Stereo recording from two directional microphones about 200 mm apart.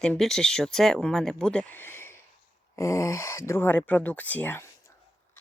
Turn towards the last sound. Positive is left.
turn(degrees=10)  # may be behind; listen again after turning